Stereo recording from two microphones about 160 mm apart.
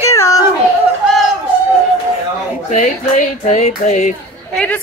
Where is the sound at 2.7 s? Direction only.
50° left (ahead or behind).